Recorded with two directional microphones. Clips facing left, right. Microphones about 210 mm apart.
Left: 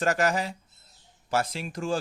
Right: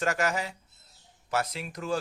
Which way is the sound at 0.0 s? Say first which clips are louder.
Left 3 dB; 35° left (ahead or behind).